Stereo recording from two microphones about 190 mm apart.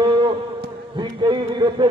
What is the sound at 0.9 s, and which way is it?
Speech, 25° right (ahead or behind).